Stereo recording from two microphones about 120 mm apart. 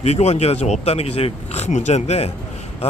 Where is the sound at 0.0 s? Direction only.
65° left (ahead or behind).